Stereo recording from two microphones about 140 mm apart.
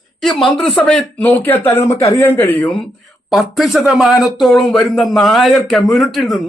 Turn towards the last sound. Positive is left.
turn(degrees=0)  # may be behind; listen again after turning